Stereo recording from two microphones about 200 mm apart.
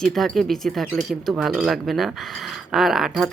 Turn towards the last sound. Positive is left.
turn(degrees=0)  # may be behind; listen again after turning